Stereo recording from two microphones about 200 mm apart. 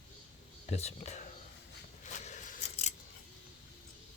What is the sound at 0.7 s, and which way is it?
Speech, 30° left (ahead or behind).